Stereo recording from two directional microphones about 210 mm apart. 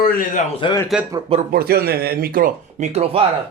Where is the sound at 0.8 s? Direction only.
5° right (ahead or behind).